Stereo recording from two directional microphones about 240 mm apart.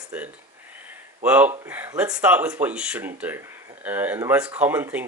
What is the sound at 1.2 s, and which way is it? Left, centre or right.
Speech, centre.